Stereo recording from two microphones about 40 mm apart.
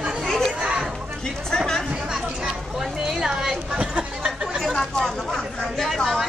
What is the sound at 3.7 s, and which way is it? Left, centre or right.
Chatter, right.